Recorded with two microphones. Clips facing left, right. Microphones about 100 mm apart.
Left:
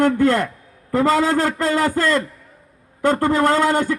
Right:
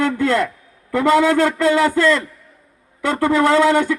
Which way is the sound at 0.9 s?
35° left (ahead or behind).